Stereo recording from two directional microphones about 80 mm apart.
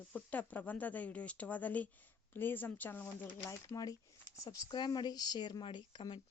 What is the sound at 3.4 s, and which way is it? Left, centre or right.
Speech, left.